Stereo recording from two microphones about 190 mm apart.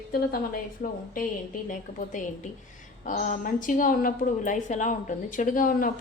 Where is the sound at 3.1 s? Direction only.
45° left (ahead or behind).